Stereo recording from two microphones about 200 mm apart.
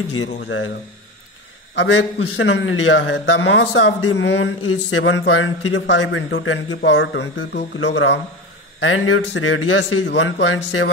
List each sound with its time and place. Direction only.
0.2 s a man's voice: 75° left (ahead or behind)
1.8 s a man's voice: 60° left (ahead or behind)
4.6 s a man's voice: 75° left (ahead or behind)
8.8 s a man's voice: 85° left